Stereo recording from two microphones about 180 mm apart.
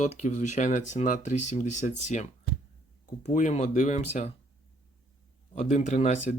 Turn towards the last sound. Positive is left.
turn(degrees=40)  # may be behind; listen again after turning